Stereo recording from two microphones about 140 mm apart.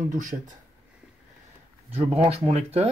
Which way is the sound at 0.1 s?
70° right (ahead or behind).